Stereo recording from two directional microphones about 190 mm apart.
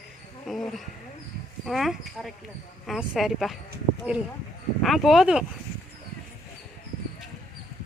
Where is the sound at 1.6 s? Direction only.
Centre (ahead or behind).